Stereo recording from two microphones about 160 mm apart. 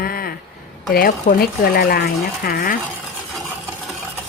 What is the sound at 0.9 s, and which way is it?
A woman's voice, 70° left (ahead or behind).